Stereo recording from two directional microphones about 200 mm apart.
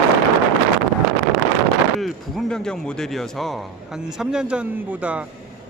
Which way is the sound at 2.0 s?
Centre (ahead or behind).